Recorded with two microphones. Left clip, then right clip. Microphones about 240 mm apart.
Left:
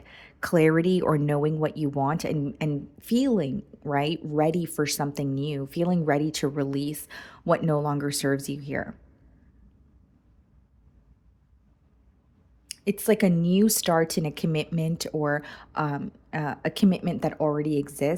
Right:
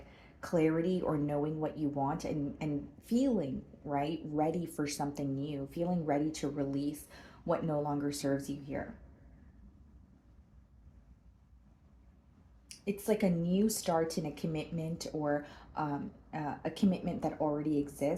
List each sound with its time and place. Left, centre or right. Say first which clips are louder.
0.1 s speech: left 9 dB; left
12.6 s speech: left 9 dB; left